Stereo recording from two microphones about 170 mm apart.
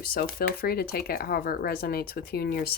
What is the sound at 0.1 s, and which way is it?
Speech, 60° left (ahead or behind).